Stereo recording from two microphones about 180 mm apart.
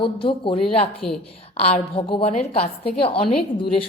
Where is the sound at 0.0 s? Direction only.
30° left (ahead or behind).